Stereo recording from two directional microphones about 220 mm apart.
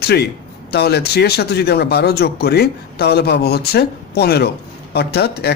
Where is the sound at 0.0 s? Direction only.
45° left (ahead or behind).